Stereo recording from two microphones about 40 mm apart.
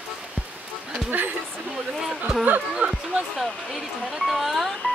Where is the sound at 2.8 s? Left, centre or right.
Right.